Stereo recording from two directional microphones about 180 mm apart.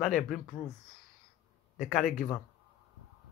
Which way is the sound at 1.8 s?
Centre (ahead or behind).